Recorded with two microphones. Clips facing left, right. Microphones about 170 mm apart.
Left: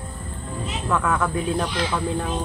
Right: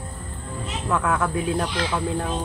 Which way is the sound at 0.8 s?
5° right (ahead or behind).